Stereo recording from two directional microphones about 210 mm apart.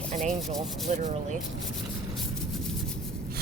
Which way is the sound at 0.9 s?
35° right (ahead or behind).